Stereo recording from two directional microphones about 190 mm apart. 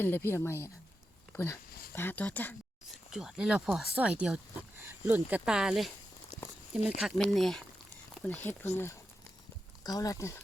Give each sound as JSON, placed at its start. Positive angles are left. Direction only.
{"t": 0.0, "sound": "speech", "side_deg": 10}
{"t": 3.1, "sound": "speech", "side_deg": -5}
{"t": 9.8, "sound": "speech", "side_deg": 20}